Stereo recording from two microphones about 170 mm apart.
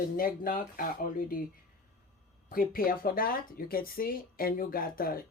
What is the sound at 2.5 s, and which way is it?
Speech, 60° left (ahead or behind).